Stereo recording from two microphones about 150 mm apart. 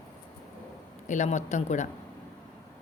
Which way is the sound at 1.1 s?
50° left (ahead or behind).